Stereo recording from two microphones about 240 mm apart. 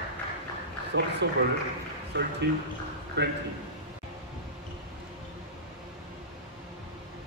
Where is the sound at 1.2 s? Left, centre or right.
Right.